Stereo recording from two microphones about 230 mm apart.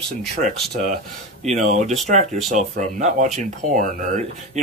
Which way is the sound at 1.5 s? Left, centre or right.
Right.